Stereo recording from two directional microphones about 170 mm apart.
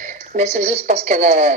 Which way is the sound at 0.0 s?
45° right (ahead or behind).